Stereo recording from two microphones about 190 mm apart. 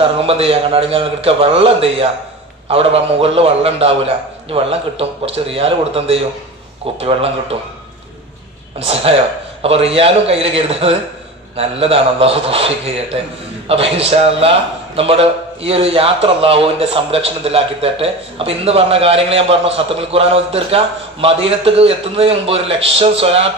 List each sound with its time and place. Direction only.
0.0 s speech: 30° right (ahead or behind)
9.6 s speech: 30° right (ahead or behind)